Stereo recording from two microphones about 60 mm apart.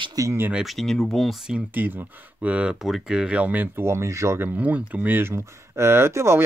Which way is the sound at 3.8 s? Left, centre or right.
Right.